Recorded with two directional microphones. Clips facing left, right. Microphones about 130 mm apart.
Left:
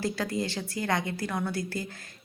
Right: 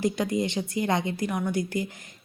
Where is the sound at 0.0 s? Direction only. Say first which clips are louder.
Right 4 dB; 20° right (ahead or behind).